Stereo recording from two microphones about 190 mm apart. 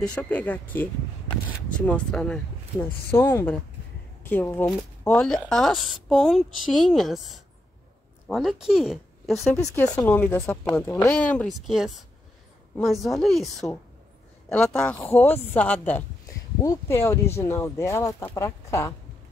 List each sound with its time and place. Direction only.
0.0 s speech: 5° left (ahead or behind)
1.9 s a woman's voice: 5° left (ahead or behind)
9.6 s a woman's voice: 10° left (ahead or behind)